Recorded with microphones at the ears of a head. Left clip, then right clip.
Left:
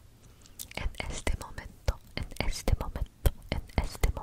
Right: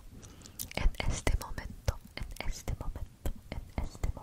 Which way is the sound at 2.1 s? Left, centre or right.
Left.